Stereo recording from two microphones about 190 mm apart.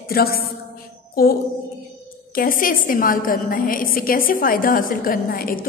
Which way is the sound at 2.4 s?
45° left (ahead or behind).